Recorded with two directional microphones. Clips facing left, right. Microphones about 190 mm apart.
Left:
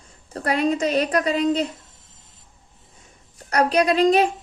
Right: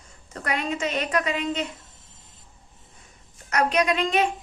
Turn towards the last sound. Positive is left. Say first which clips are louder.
# left 6 dB
turn(degrees=35)  # may be behind; listen again after turning